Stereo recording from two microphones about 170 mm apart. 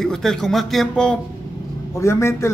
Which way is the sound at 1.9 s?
15° left (ahead or behind).